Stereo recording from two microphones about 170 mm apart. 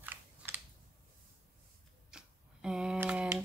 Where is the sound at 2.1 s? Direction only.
5° right (ahead or behind).